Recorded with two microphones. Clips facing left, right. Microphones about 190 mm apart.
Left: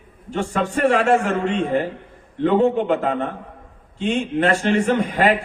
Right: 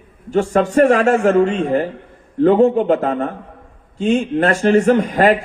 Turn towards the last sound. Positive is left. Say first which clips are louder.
# right 5 dB
turn(degrees=-40)  # may be behind; listen again after turning